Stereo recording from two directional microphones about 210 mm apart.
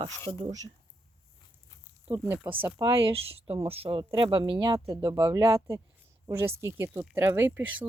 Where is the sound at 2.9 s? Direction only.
25° right (ahead or behind).